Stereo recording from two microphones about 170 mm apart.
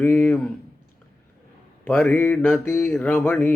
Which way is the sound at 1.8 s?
5° left (ahead or behind).